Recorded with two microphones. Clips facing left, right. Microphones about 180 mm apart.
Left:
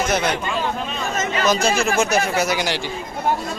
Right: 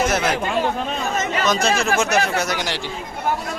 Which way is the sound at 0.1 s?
5° right (ahead or behind).